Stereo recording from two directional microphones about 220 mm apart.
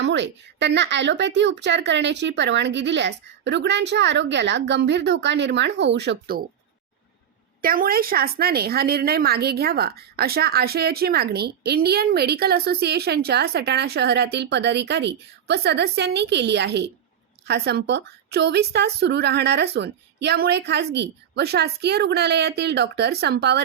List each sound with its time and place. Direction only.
0.0 s a woman's voice: 55° right (ahead or behind)
7.6 s a woman's voice: 40° right (ahead or behind)